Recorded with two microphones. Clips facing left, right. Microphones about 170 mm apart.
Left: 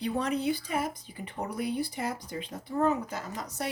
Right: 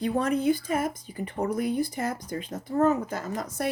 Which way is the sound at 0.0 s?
50° right (ahead or behind).